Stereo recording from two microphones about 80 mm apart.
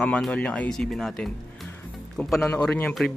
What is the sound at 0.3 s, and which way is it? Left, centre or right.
Speech, centre.